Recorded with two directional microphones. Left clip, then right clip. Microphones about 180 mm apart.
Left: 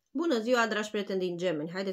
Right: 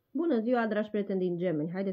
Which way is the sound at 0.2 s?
35° right (ahead or behind).